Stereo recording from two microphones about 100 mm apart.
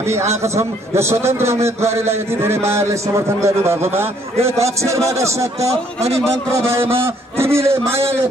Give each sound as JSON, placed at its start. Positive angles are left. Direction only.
{"t": 0.1, "sound": "a man's voice", "side_deg": -30}